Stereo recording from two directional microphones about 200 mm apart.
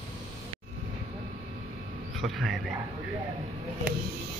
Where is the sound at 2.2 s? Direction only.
Centre (ahead or behind).